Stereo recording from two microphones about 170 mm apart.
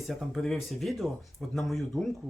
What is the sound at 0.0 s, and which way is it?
Speech, centre (ahead or behind).